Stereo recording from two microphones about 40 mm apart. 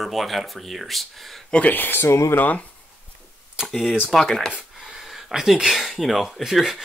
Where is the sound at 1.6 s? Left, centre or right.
Left.